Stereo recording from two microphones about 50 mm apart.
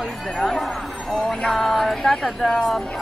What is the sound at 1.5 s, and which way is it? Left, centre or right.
Speech, centre.